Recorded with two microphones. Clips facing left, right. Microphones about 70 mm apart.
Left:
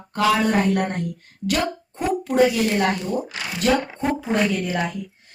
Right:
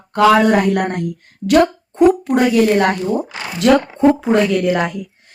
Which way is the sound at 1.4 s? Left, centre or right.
Right.